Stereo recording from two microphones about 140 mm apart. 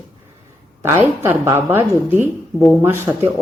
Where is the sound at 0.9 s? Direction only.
15° right (ahead or behind).